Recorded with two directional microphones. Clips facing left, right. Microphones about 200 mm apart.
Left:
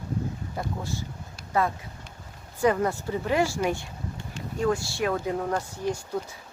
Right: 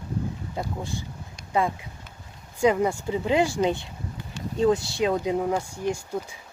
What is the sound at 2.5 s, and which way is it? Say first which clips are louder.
Speech: right 2 dB; 15° right (ahead or behind).